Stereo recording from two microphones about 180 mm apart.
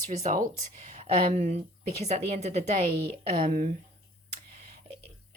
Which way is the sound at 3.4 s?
50° right (ahead or behind).